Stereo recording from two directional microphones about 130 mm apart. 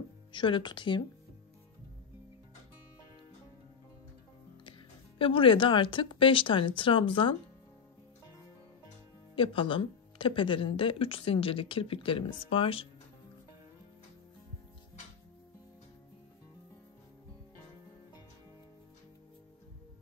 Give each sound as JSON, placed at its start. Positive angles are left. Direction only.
{"t": 0.3, "sound": "speech", "side_deg": 40}
{"t": 5.2, "sound": "speech", "side_deg": 45}
{"t": 9.3, "sound": "speech", "side_deg": 45}